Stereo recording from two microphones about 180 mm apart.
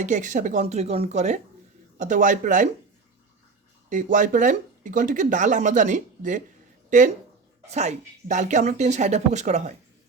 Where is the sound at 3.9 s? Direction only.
45° right (ahead or behind).